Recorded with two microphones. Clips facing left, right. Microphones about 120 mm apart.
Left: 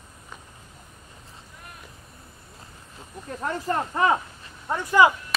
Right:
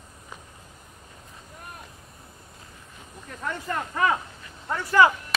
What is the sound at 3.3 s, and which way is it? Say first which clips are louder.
Snake: left 4 dB; 35° left (ahead or behind).